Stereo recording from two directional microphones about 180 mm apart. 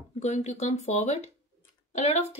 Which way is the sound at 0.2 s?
40° left (ahead or behind).